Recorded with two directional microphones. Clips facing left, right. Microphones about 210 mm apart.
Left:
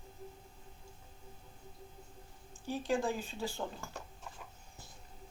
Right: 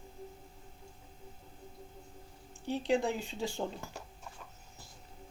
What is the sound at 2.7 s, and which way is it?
Speech, 25° right (ahead or behind).